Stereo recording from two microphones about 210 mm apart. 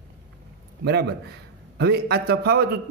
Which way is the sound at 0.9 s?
50° right (ahead or behind).